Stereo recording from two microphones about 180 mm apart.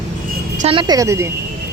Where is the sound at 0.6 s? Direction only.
30° right (ahead or behind).